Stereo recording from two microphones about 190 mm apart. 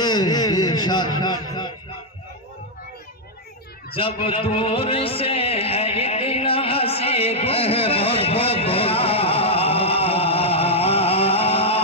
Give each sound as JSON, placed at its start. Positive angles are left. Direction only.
{"t": 0.0, "sound": "a sound", "side_deg": 20}
{"t": 1.2, "sound": "a man's voice", "side_deg": 20}
{"t": 3.9, "sound": "a man's voice", "side_deg": 30}